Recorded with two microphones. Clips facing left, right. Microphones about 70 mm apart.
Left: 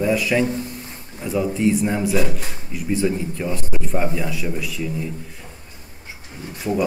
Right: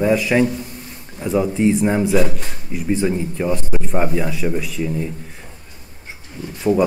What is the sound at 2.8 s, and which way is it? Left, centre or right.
Speech, centre.